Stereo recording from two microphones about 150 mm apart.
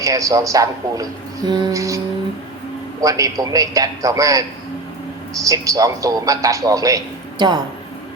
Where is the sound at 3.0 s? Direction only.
25° right (ahead or behind).